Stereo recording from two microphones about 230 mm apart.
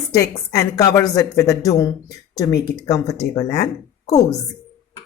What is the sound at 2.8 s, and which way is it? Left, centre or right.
A woman's voice, centre.